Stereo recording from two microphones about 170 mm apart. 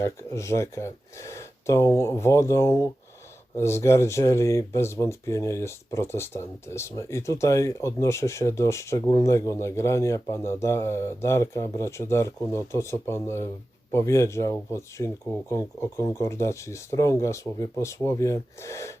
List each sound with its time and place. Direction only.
0.0 s speech: 15° left (ahead or behind)